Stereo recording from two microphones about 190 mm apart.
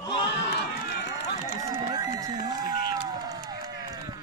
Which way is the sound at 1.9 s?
20° right (ahead or behind).